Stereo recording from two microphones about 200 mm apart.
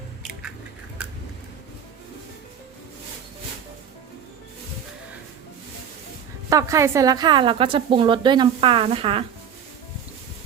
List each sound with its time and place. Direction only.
6.5 s a woman's voice: 15° right (ahead or behind)